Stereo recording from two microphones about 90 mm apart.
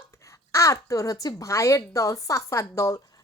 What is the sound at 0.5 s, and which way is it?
A woman's voice, 35° left (ahead or behind).